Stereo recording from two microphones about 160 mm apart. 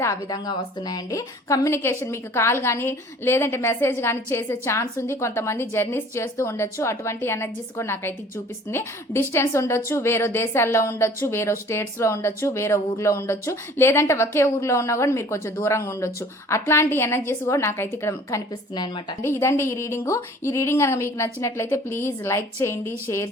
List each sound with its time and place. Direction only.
0.0 s a woman's voice: 20° left (ahead or behind)